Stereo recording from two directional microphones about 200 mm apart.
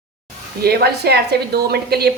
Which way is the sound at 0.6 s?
55° right (ahead or behind).